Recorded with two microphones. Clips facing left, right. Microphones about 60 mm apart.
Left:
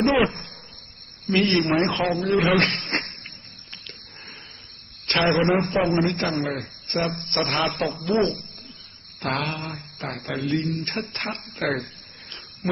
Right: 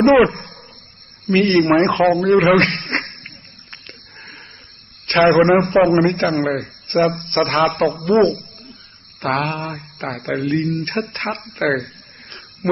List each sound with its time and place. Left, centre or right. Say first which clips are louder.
0.0 s a man's voice: right 8 dB; right
5.0 s mantra: right 8 dB; right